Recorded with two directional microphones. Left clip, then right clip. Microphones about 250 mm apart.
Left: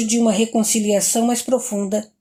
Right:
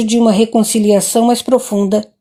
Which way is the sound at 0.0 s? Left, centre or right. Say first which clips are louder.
Right 6 dB; right.